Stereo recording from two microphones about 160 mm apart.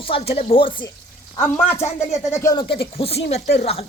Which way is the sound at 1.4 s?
10° left (ahead or behind).